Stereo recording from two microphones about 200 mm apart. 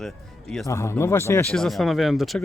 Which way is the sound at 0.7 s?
15° left (ahead or behind).